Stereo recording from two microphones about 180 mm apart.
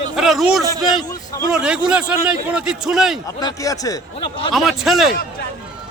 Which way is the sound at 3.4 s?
20° left (ahead or behind).